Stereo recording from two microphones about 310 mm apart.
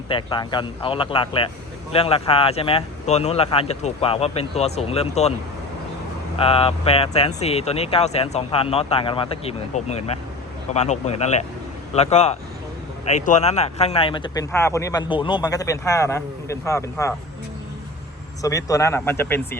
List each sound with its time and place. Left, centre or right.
0.1 s speech: centre
6.3 s speech: centre
18.4 s speech: centre